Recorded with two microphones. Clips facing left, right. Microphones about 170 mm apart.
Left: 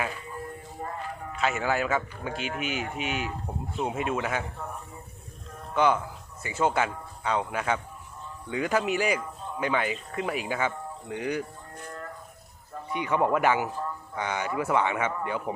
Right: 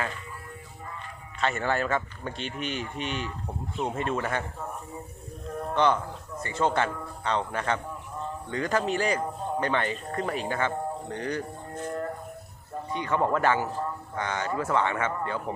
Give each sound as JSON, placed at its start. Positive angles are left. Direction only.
{"t": 0.8, "sound": "music", "side_deg": 50}
{"t": 1.4, "sound": "a man's voice", "side_deg": 5}
{"t": 5.7, "sound": "a man's voice", "side_deg": 10}
{"t": 12.9, "sound": "a man's voice", "side_deg": 15}